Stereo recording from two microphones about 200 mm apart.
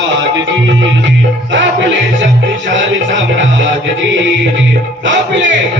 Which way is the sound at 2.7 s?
65° right (ahead or behind).